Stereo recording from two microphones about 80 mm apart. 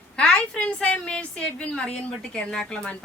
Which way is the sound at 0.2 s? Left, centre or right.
Centre.